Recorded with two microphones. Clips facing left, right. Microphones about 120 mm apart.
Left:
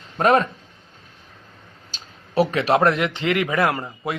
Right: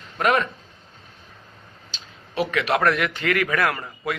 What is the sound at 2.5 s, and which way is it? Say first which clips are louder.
A man's voice: left 1 dB; 30° left (ahead or behind).